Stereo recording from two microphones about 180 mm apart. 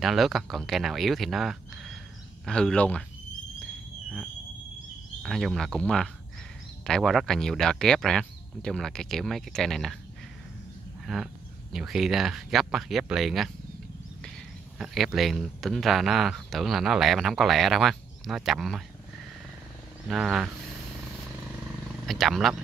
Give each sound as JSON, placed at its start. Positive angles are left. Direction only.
{"t": 0.0, "sound": "speech", "side_deg": 0}
{"t": 5.2, "sound": "speech", "side_deg": 0}
{"t": 11.1, "sound": "speech", "side_deg": 0}
{"t": 15.1, "sound": "speech", "side_deg": 0}
{"t": 20.1, "sound": "speech", "side_deg": -5}
{"t": 22.0, "sound": "speech", "side_deg": 0}